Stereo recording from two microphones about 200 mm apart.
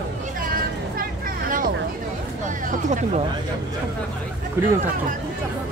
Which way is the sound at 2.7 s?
40° right (ahead or behind).